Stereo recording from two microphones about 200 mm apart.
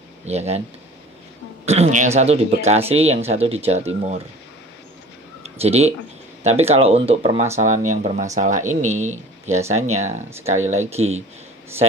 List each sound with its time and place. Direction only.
0.2 s speech: 35° right (ahead or behind)
1.7 s speech: 35° right (ahead or behind)
5.4 s speech: 30° right (ahead or behind)